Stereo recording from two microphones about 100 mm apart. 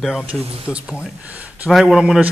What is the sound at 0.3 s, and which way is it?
Speech, 10° right (ahead or behind).